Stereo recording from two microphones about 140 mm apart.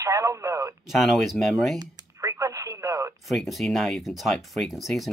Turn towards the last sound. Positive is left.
turn(degrees=0)  # may be behind; listen again after turning